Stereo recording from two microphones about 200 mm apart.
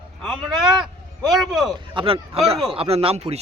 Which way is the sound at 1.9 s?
25° right (ahead or behind).